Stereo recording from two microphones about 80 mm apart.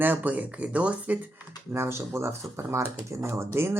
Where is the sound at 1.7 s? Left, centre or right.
Right.